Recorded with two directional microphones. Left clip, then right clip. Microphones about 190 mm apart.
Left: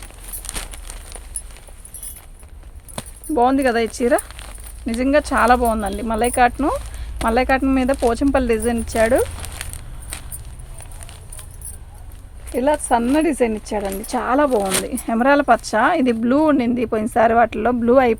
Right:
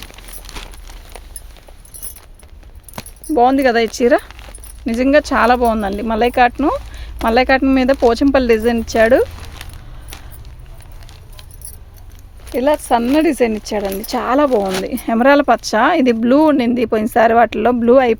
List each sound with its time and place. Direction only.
0.4 s a sound: 15° left (ahead or behind)
3.3 s speech: 40° right (ahead or behind)
12.5 s speech: 55° right (ahead or behind)